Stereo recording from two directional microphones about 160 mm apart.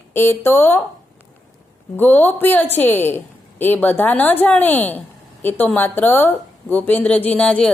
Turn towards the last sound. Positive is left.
turn(degrees=5)  # may be behind; listen again after turning